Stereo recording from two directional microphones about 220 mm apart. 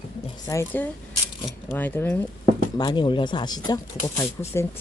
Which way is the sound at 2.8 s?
20° left (ahead or behind).